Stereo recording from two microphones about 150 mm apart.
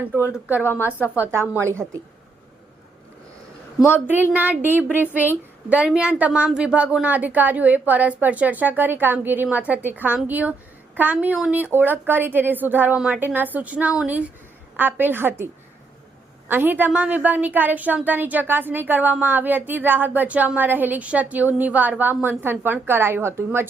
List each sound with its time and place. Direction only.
0.0 s a woman's voice: 10° right (ahead or behind)
0.6 s a woman's voice: 15° left (ahead or behind)
1.1 s a woman's voice: 15° right (ahead or behind)
3.8 s a woman's voice: 15° left (ahead or behind)
4.0 s a woman's voice: 10° right (ahead or behind)
16.5 s a woman's voice: 10° right (ahead or behind)